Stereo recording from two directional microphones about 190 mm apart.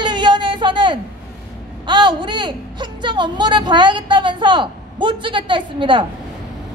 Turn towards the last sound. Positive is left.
turn(degrees=-25)  # may be behind; listen again after turning